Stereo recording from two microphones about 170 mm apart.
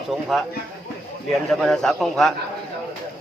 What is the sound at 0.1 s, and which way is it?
Speech, centre (ahead or behind).